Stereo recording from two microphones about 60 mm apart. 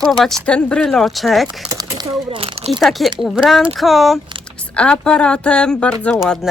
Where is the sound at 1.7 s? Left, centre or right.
Right.